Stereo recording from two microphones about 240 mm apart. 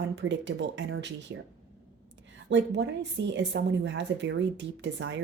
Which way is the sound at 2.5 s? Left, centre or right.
Right.